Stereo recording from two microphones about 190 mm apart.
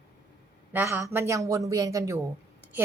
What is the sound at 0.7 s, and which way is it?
A woman's voice, 15° right (ahead or behind).